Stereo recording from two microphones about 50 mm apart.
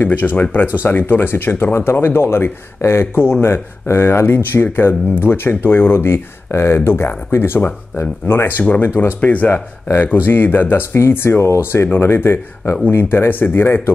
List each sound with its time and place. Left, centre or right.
0.0 s speech: left
0.8 s speech: left
9.2 s speech: left
11.6 s speech: left